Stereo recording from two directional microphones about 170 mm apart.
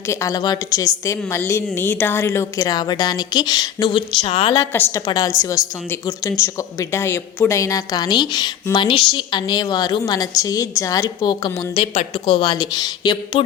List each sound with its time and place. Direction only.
0.1 s speech: 20° left (ahead or behind)
4.6 s speech: 15° left (ahead or behind)